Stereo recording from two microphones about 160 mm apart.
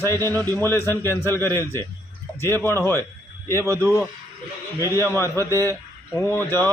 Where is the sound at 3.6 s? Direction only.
20° right (ahead or behind).